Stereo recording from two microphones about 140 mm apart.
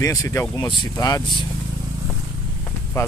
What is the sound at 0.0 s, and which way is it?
Speech, 25° left (ahead or behind).